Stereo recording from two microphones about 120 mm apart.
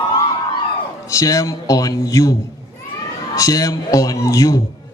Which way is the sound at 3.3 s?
30° left (ahead or behind).